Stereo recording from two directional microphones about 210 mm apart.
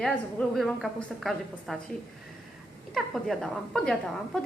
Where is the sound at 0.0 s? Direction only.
5° left (ahead or behind).